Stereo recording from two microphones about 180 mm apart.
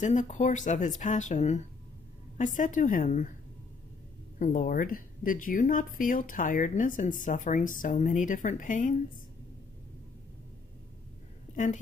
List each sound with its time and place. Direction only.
0.0 s speech: 40° left (ahead or behind)
4.4 s speech: 50° left (ahead or behind)
11.5 s a woman's voice: 45° left (ahead or behind)